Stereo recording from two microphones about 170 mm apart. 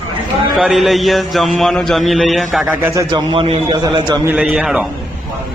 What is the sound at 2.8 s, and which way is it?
A man's voice, 20° right (ahead or behind).